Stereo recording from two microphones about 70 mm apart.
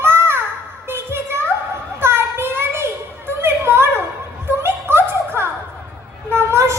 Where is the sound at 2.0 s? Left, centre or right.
Right.